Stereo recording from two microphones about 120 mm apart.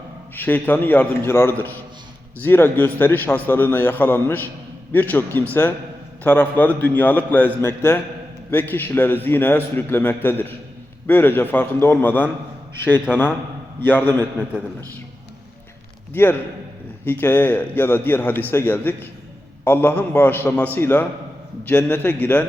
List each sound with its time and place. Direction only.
0.3 s a man's voice: 15° left (ahead or behind)
16.1 s a man's voice: 15° left (ahead or behind)